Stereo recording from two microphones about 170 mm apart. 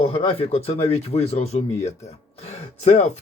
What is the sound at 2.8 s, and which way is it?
Speech, 40° left (ahead or behind).